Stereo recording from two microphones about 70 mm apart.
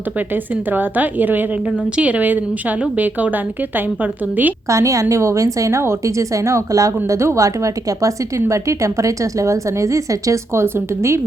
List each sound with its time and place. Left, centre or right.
0.5 s a woman's voice: right
4.7 s a woman's voice: right